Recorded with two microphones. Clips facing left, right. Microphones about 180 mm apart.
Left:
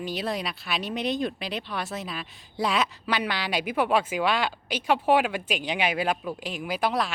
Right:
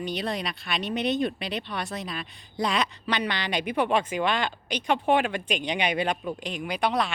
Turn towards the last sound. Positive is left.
turn(degrees=0)  # may be behind; listen again after turning